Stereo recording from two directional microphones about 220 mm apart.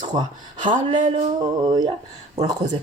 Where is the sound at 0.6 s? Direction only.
30° right (ahead or behind).